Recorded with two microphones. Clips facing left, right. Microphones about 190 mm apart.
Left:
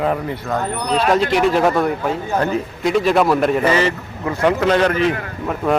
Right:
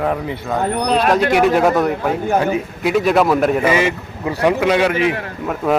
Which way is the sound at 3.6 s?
15° right (ahead or behind).